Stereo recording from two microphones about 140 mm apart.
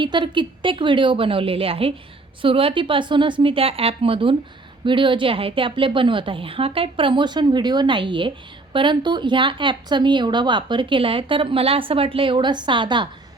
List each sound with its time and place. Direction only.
0.0 s a woman's voice: 35° right (ahead or behind)